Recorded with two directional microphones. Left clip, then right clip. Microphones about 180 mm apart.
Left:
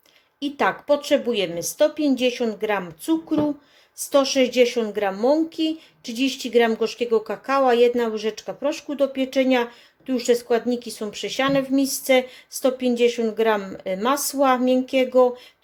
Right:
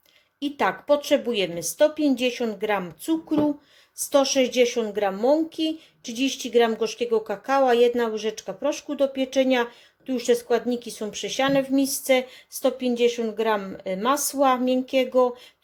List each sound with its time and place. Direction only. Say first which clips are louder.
0.3 s a woman's voice: left 2 dB; 5° right (ahead or behind)